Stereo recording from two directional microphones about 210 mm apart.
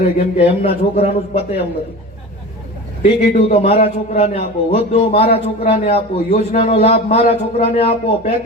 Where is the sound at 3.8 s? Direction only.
40° left (ahead or behind).